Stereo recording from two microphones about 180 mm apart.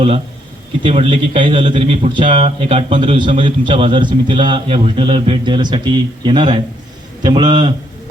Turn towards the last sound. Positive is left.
turn(degrees=-25)  # may be behind; listen again after turning